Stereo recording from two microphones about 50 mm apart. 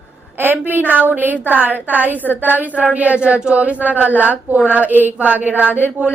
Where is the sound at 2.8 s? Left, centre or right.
Right.